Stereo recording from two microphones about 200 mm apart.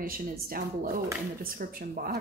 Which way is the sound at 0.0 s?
45° right (ahead or behind).